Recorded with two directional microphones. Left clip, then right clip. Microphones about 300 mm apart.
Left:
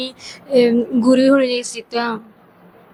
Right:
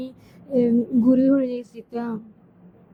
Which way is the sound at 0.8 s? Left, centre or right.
Centre.